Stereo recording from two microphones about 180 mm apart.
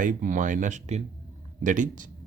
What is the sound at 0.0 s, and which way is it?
Speech, 45° right (ahead or behind).